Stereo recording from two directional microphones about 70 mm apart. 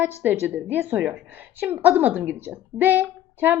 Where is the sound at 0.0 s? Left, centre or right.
Right.